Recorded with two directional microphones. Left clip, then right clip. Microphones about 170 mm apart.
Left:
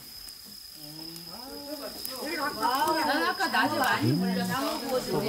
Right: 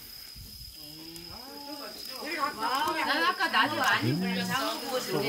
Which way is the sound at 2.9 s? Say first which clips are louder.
Left 1 dB; 40° left (ahead or behind).